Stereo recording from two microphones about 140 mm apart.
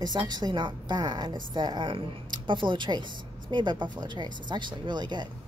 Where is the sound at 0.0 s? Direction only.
30° right (ahead or behind).